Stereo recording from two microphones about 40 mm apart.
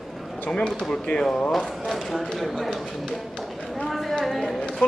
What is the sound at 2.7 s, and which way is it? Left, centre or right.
Speech, centre.